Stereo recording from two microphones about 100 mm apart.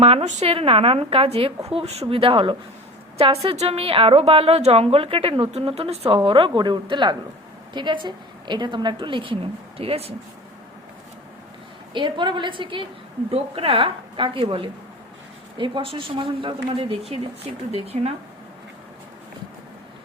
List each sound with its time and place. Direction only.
0.0 s speech: 80° right
1.7 s speech: 90° right; by 2.6 s 65° right (ahead or behind)
3.2 s a woman's voice: 80° right
6.2 s a woman's voice: 60° right (ahead or behind)
6.5 s a woman's voice: 50° right (ahead or behind); by 10.2 s 85° right
11.9 s a woman's voice: 50° right (ahead or behind)
13.3 s a woman's voice: 65° right (ahead or behind)
17.8 s speech: 90° right